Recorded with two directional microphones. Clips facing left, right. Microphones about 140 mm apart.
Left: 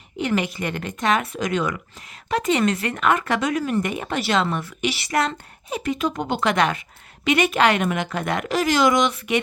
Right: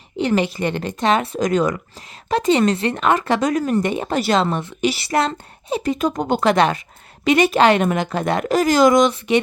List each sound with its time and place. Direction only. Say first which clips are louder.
0.2 s speech: right 5 dB; 30° right (ahead or behind)
1.4 s speech: right 5 dB; 40° right (ahead or behind)
9.1 s speech: right 5 dB; 30° right (ahead or behind)